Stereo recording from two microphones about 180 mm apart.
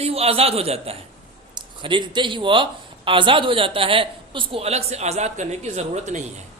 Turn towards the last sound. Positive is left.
turn(degrees=-40)  # may be behind; listen again after turning